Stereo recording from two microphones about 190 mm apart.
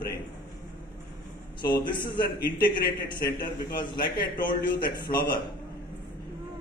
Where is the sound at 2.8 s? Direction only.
55° left (ahead or behind).